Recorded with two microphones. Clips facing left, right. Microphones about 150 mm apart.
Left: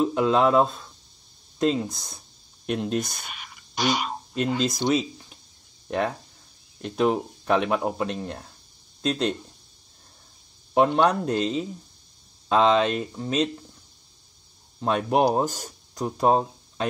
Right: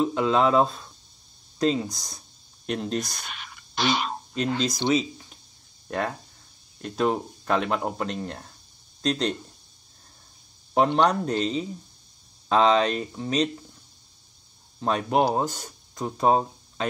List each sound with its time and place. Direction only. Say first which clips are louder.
0.0 s speech: left 1 dB; 5° left (ahead or behind)
10.7 s speech: left 1 dB; 5° left (ahead or behind)
14.8 s speech: left 1 dB; 5° left (ahead or behind)
15.1 s speech: left 2 dB; 15° left (ahead or behind)
15.5 s speech: left 2 dB; centre (ahead or behind)